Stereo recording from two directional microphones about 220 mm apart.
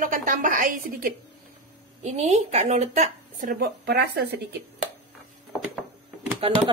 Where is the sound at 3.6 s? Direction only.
50° right (ahead or behind).